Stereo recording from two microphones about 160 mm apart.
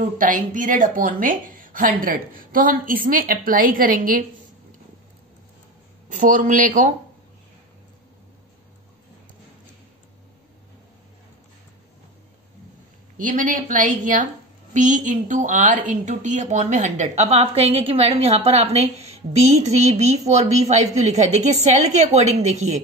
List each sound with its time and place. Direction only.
0.2 s a woman's voice: 55° right (ahead or behind)
6.1 s a woman's voice: 55° right (ahead or behind)
13.2 s a woman's voice: 55° right (ahead or behind)